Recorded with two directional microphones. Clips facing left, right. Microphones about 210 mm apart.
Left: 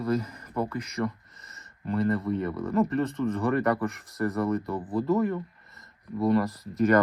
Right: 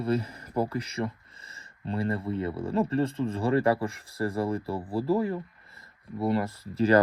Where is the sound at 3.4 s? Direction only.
30° right (ahead or behind).